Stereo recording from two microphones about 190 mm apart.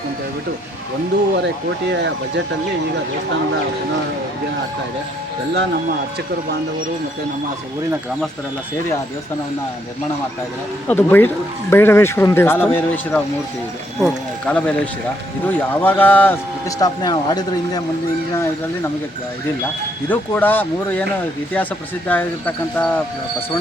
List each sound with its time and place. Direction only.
1.9 s speech: 65° right (ahead or behind)
10.8 s speech: 10° left (ahead or behind)
20.1 s speech: 10° left (ahead or behind)